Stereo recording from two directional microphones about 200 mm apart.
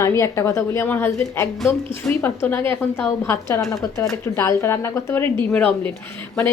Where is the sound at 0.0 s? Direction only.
15° left (ahead or behind).